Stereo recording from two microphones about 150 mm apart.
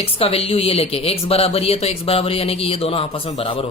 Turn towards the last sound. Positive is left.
turn(degrees=40)  # may be behind; listen again after turning